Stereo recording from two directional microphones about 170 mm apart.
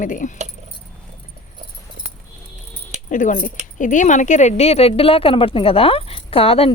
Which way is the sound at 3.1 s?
50° left (ahead or behind).